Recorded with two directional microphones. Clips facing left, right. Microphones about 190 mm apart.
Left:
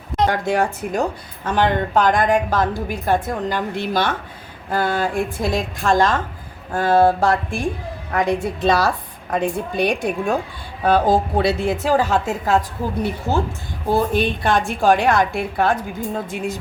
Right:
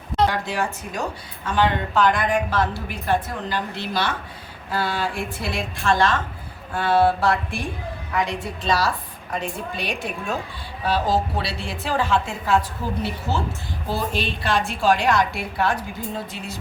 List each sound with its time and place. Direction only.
0.3 s a woman's voice: 50° left (ahead or behind)